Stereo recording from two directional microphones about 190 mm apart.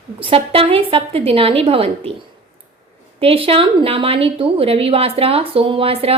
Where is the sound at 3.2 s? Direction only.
30° right (ahead or behind).